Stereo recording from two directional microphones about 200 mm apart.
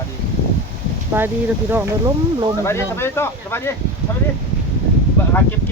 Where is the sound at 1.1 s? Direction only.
10° right (ahead or behind).